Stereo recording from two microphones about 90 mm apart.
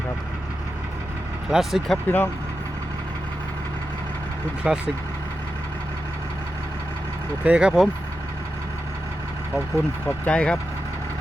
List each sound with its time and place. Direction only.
1.5 s speech: 5° right (ahead or behind)
2.0 s speech: 20° left (ahead or behind)
4.7 s speech: 10° right (ahead or behind)
7.4 s speech: 10° right (ahead or behind)
10.2 s speech: 15° left (ahead or behind)